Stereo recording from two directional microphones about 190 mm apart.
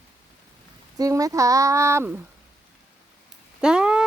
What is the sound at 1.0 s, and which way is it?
Speech, 20° right (ahead or behind).